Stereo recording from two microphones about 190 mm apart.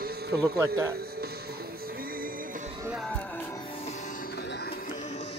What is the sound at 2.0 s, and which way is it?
Music, 50° right (ahead or behind).